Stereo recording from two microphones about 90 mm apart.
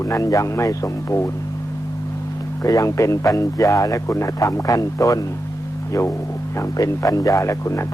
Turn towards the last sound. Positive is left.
turn(degrees=35)  # may be behind; listen again after turning